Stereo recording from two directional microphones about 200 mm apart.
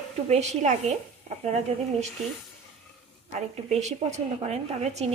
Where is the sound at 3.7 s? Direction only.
35° right (ahead or behind).